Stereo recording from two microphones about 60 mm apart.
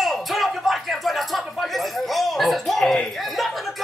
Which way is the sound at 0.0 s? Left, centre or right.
Centre.